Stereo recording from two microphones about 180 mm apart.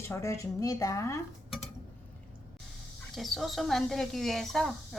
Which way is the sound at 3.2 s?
Centre (ahead or behind).